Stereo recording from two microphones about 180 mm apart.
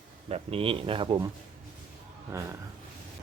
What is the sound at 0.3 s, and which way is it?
Speech, 30° right (ahead or behind).